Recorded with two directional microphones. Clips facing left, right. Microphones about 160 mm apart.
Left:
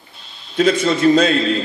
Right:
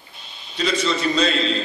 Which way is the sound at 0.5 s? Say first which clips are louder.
Left 7 dB; 50° left (ahead or behind).